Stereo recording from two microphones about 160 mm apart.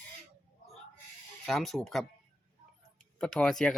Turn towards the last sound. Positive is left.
turn(degrees=5)  # may be behind; listen again after turning